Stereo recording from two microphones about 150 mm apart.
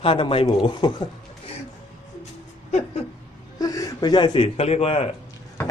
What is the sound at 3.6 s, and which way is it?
Speech, 25° left (ahead or behind).